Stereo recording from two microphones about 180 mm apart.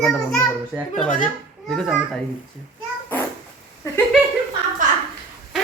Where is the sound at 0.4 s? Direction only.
Centre (ahead or behind).